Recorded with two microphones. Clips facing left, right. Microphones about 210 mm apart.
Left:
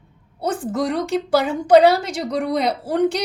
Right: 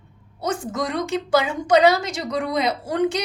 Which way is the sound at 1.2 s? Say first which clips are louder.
Left 3 dB; 60° left (ahead or behind).